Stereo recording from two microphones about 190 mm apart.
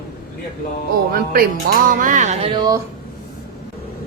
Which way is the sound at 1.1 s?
50° right (ahead or behind).